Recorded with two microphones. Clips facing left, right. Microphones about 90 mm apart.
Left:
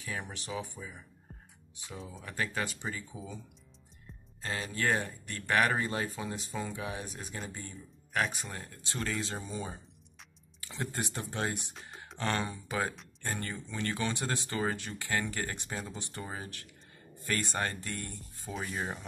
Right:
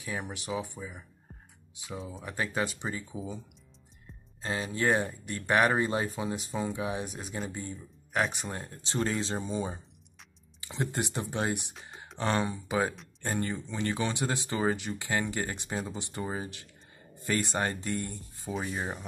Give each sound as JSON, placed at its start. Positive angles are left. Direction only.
{"t": 0.0, "sound": "speech", "side_deg": -15}
{"t": 4.1, "sound": "music", "side_deg": 0}
{"t": 4.7, "sound": "speech", "side_deg": -20}
{"t": 15.7, "sound": "speech", "side_deg": 0}
{"t": 16.0, "sound": "speech", "side_deg": -20}
{"t": 18.5, "sound": "speech", "side_deg": -5}